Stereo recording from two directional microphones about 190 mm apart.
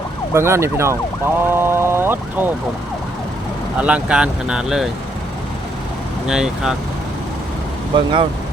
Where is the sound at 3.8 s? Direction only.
5° right (ahead or behind).